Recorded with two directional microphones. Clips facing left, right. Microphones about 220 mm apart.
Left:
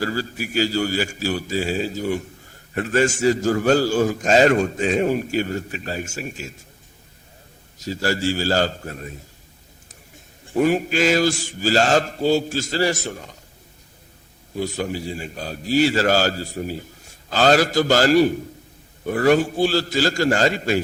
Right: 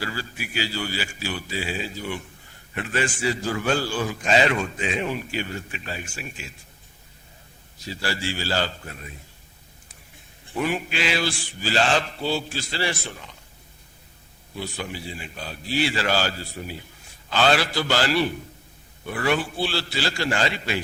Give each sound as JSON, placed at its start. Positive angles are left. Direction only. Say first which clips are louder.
{"t": 0.0, "sound": "a man's voice", "louder": "left 7 dB", "side_deg": 40}
{"t": 7.8, "sound": "a man's voice", "louder": "left 7 dB", "side_deg": 45}
{"t": 10.4, "sound": "a man's voice", "louder": "left 8 dB", "side_deg": 45}
{"t": 14.5, "sound": "a man's voice", "louder": "left 7 dB", "side_deg": 40}